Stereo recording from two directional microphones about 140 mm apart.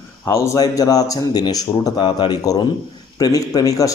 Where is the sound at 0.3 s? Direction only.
25° left (ahead or behind).